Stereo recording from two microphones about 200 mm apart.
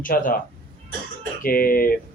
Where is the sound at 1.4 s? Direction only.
45° left (ahead or behind).